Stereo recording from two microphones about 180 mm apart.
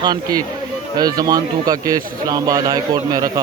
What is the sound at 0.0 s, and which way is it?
Speech, 20° right (ahead or behind).